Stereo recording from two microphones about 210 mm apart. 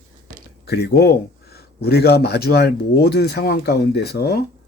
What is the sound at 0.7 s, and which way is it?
Speech, 50° left (ahead or behind).